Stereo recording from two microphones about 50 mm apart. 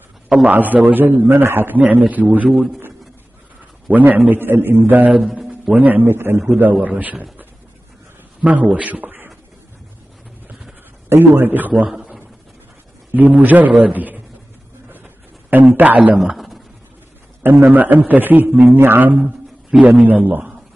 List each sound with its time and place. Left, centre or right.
0.5 s a man's voice: right
3.9 s a man's voice: right
5.1 s a man's voice: right
5.5 s a man's voice: right
6.0 s a man's voice: right
6.6 s a man's voice: right
8.4 s a man's voice: right
11.1 s a man's voice: right
13.1 s a man's voice: right
15.5 s a man's voice: right
16.2 s a sound: centre
17.4 s a man's voice: right
19.1 s a sound: centre
19.8 s a man's voice: right